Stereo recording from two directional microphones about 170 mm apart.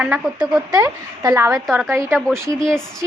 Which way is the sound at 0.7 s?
20° right (ahead or behind).